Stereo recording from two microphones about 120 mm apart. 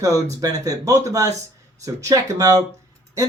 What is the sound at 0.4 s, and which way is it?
Speech, 30° right (ahead or behind).